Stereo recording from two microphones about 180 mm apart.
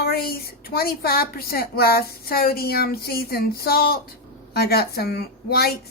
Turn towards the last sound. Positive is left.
turn(degrees=60)  # may be behind; listen again after turning